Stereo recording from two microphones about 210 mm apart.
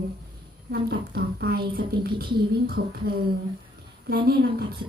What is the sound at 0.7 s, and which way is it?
A woman's voice, 45° right (ahead or behind).